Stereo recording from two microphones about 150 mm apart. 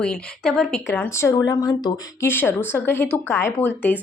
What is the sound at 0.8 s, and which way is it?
A woman's voice, 15° left (ahead or behind).